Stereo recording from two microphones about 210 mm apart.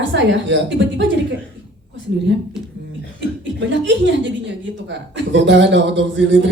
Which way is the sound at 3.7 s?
60° right (ahead or behind).